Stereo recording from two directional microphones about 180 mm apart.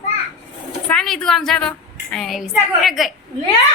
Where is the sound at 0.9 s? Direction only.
5° left (ahead or behind).